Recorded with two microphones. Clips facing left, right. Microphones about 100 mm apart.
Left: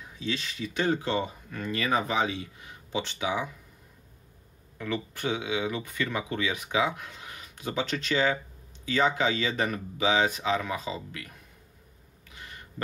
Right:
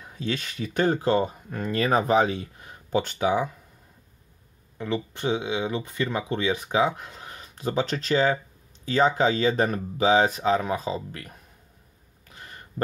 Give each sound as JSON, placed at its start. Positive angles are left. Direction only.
{"t": 0.1, "sound": "speech", "side_deg": -50}
{"t": 4.7, "sound": "speech", "side_deg": -25}
{"t": 12.3, "sound": "a sound", "side_deg": -40}